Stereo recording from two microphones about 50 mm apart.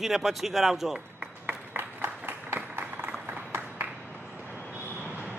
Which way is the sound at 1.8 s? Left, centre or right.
Right.